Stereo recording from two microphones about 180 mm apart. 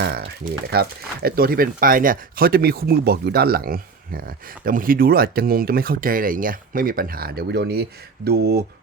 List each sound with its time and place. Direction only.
0.7 s speech: 60° right (ahead or behind)